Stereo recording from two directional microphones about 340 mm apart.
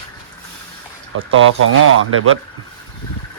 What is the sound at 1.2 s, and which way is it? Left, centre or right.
Speech, right.